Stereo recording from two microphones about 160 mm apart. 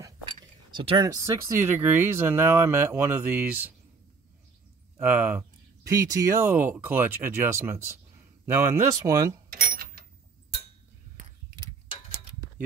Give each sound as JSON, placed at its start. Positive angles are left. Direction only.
{"t": 0.0, "sound": "speech", "side_deg": -30}
{"t": 4.9, "sound": "speech", "side_deg": -10}
{"t": 9.5, "sound": "a sound", "side_deg": -65}